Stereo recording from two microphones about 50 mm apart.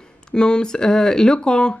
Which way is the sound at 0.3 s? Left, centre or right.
Centre.